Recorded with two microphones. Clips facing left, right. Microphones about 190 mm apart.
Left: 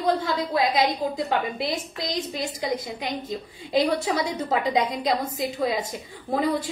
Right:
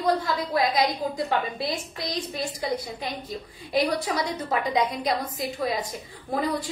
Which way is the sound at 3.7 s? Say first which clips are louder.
Left 2 dB; 25° left (ahead or behind).